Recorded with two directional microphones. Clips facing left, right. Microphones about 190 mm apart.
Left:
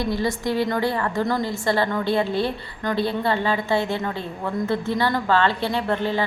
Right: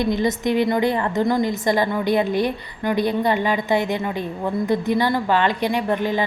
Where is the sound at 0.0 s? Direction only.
20° right (ahead or behind).